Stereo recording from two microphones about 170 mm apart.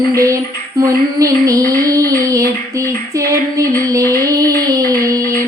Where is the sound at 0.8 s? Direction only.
20° right (ahead or behind).